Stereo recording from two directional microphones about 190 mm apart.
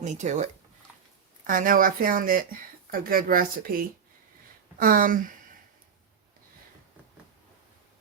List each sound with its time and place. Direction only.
0.0 s speech: 40° right (ahead or behind)
1.5 s speech: 45° right (ahead or behind)